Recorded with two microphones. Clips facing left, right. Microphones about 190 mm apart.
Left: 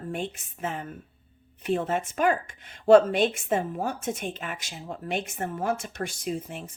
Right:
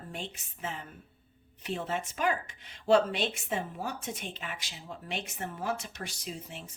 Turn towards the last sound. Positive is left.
turn(degrees=50)  # may be behind; listen again after turning